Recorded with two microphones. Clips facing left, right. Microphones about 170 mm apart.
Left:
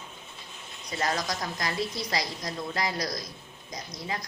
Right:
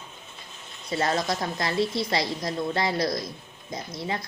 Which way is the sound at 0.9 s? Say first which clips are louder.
Right 4 dB; 30° right (ahead or behind).